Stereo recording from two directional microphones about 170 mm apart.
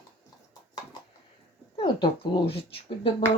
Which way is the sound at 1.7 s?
30° left (ahead or behind).